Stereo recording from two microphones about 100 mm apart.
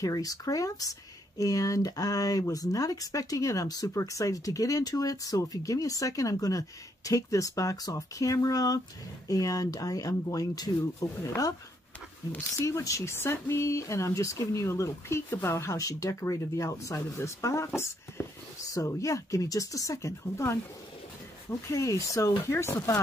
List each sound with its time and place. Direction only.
0.0 s speech: 35° left (ahead or behind)
12.3 s speech: 25° left (ahead or behind)